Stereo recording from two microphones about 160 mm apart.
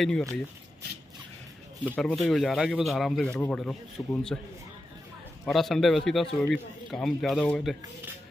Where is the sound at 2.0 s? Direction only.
5° left (ahead or behind).